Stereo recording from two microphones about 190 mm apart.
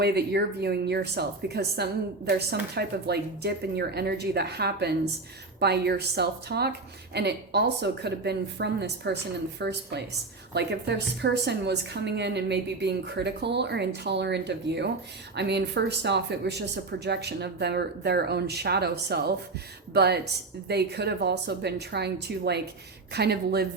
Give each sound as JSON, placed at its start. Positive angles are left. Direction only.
{"t": 0.0, "sound": "a woman's voice", "side_deg": -60}